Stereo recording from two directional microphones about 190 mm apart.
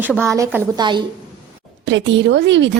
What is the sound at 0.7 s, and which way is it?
Speech, 25° right (ahead or behind).